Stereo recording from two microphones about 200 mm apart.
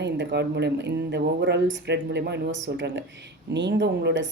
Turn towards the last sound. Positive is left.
turn(degrees=-60)  # may be behind; listen again after turning